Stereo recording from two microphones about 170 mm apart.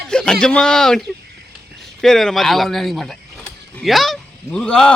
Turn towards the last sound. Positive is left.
turn(degrees=5)  # may be behind; listen again after turning